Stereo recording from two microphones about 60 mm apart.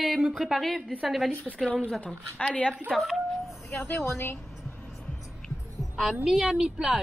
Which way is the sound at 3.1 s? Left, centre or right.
Centre.